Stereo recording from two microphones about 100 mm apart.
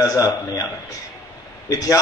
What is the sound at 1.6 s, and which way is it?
Speech, 35° left (ahead or behind).